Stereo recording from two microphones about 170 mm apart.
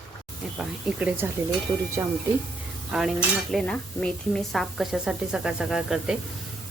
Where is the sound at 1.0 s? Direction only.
5° right (ahead or behind).